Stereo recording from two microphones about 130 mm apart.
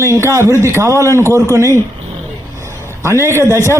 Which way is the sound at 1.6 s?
20° left (ahead or behind).